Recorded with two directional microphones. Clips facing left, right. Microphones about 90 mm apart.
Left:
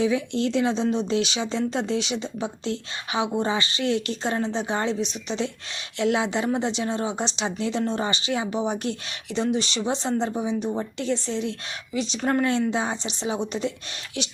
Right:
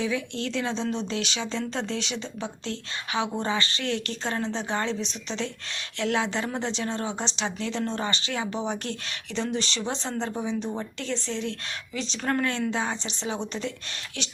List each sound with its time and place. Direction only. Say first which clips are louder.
0.0 s speech: left 6 dB; 20° left (ahead or behind)